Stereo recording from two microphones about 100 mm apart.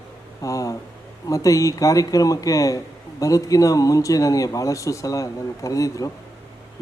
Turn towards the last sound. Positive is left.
turn(degrees=35)  # may be behind; listen again after turning